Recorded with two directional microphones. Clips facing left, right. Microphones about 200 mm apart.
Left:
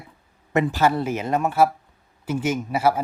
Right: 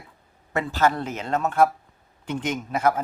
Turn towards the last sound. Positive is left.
turn(degrees=10)  # may be behind; listen again after turning